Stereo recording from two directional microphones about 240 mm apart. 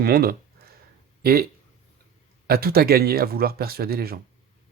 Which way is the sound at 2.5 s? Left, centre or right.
Right.